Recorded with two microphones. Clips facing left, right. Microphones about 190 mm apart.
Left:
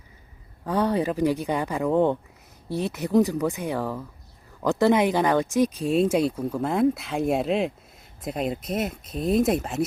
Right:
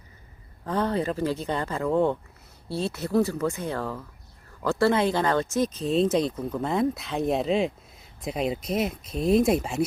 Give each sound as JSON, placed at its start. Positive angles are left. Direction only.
{"t": 0.6, "sound": "speech", "side_deg": 15}